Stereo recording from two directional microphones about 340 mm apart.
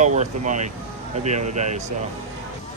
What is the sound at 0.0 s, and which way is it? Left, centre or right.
Speech, right.